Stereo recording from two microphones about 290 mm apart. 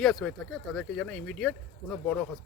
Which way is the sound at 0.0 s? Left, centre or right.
Centre.